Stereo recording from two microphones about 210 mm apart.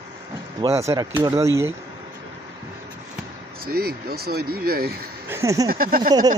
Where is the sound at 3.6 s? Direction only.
45° right (ahead or behind).